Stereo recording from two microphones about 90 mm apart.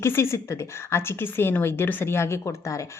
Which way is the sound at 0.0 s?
30° left (ahead or behind).